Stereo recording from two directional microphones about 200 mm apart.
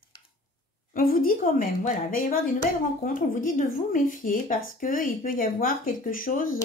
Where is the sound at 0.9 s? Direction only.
45° left (ahead or behind).